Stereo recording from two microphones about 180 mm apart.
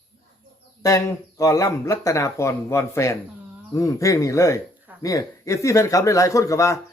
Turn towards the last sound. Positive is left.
turn(degrees=20)  # may be behind; listen again after turning